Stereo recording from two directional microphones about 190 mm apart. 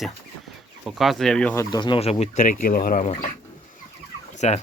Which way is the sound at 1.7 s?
25° left (ahead or behind).